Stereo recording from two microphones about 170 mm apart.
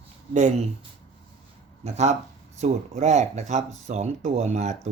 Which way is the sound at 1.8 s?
40° right (ahead or behind).